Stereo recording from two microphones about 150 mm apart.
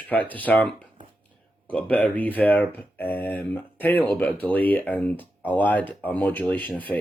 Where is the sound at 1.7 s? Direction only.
10° left (ahead or behind).